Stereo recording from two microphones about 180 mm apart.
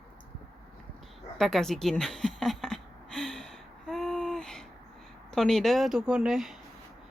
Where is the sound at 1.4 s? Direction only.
Centre (ahead or behind).